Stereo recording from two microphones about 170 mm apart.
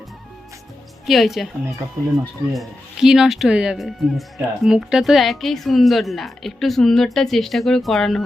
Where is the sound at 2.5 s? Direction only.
5° right (ahead or behind).